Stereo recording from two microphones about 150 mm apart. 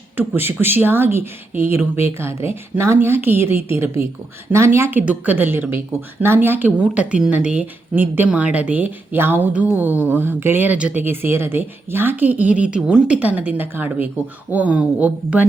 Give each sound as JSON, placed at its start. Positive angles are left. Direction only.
{"t": 0.2, "sound": "speech", "side_deg": -15}